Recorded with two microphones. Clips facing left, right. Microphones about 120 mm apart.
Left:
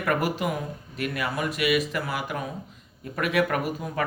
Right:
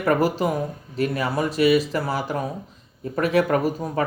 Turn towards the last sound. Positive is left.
turn(degrees=-35)  # may be behind; listen again after turning